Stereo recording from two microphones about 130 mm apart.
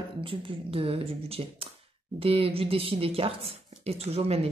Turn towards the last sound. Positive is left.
turn(degrees=-50)  # may be behind; listen again after turning